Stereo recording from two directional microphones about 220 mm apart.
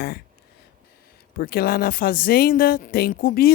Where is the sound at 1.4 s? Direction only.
45° left (ahead or behind).